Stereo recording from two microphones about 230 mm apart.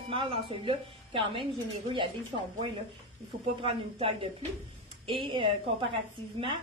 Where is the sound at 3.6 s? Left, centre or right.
Right.